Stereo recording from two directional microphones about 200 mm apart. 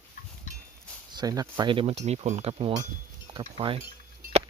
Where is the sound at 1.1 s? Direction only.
20° right (ahead or behind).